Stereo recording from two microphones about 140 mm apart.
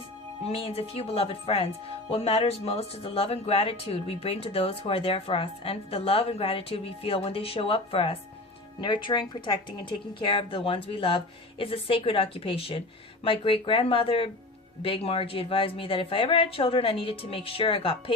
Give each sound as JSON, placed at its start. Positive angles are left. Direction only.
{"t": 0.4, "sound": "speech", "side_deg": 45}